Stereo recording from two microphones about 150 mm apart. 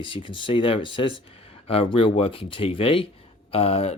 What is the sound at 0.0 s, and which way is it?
Speech, 35° left (ahead or behind).